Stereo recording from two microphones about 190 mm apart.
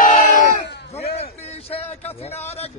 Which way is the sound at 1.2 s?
30° left (ahead or behind).